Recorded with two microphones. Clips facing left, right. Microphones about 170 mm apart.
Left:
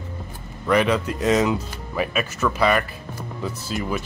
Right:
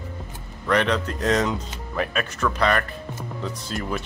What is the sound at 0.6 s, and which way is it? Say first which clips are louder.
Speech: left 2 dB; 5° left (ahead or behind).